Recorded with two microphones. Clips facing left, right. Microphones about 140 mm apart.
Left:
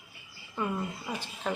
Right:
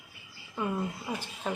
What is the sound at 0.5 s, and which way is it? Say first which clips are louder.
Speech: right 1 dB; 5° right (ahead or behind).